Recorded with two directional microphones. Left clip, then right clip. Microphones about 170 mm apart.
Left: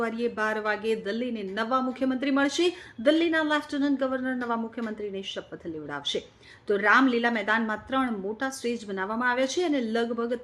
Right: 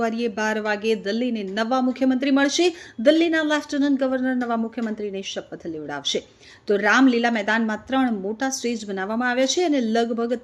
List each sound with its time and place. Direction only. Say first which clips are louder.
0.0 s speech: right 4 dB; 25° right (ahead or behind)